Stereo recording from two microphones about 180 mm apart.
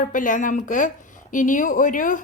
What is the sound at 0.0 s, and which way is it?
A woman's voice, 50° left (ahead or behind).